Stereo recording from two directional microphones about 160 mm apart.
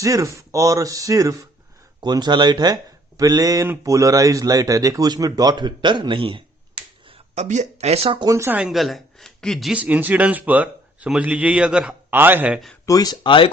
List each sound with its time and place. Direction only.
0.0 s speech: 20° right (ahead or behind)
7.1 s speech: 45° right (ahead or behind)
8.3 s speech: 15° right (ahead or behind)
12.8 s speech: 20° left (ahead or behind)